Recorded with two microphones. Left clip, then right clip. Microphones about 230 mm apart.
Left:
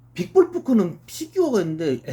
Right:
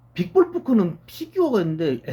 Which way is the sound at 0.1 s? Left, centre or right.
Centre.